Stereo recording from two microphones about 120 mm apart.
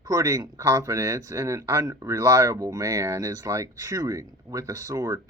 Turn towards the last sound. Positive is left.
turn(degrees=-25)  # may be behind; listen again after turning